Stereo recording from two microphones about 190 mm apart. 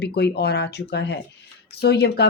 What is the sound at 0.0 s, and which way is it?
Speech, 60° left (ahead or behind).